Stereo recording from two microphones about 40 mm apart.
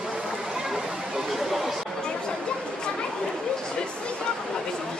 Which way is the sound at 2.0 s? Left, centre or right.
Centre.